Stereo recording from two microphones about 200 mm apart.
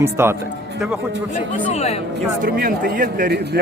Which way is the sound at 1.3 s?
35° left (ahead or behind).